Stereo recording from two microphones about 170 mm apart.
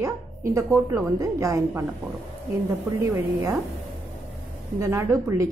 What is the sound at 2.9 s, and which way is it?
Speech, 15° right (ahead or behind).